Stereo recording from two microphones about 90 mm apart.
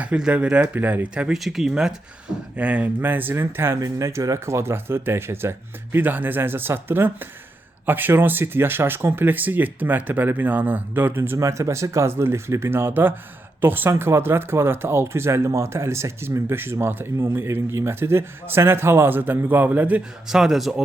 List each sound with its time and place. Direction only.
0.0 s speech: 10° right (ahead or behind)
3.8 s speech: 35° right (ahead or behind); by 20.0 s 20° right (ahead or behind)
20.2 s speech: 5° right (ahead or behind)